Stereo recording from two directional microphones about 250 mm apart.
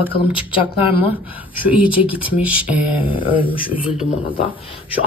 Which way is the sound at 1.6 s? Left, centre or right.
Centre.